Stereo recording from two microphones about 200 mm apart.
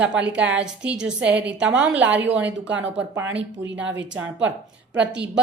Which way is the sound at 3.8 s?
65° right (ahead or behind).